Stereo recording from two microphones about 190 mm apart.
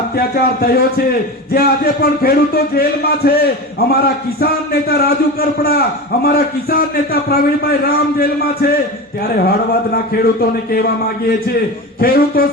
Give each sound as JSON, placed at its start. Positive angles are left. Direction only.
{"t": 0.2, "sound": "a man's voice", "side_deg": 55}
{"t": 11.9, "sound": "a man's voice", "side_deg": 55}